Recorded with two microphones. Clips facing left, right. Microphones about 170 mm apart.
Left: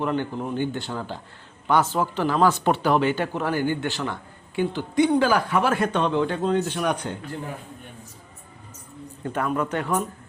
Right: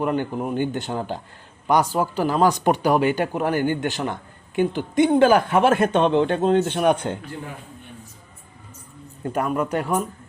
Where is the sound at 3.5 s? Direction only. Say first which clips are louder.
Right 1 dB; 50° right (ahead or behind).